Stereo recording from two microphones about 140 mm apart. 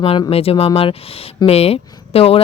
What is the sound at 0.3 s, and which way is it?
Speech, 45° left (ahead or behind).